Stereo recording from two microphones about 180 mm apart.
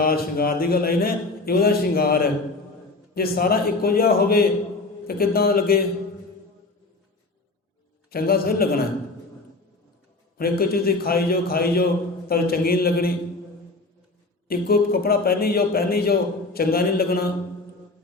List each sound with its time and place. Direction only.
0.0 s a man's voice: 55° left (ahead or behind)
8.1 s a man's voice: 55° left (ahead or behind)
10.3 s a man's voice: 55° left (ahead or behind)
14.4 s a man's voice: 60° left (ahead or behind)